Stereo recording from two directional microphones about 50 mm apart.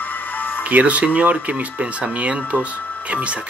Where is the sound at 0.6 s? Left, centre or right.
Right.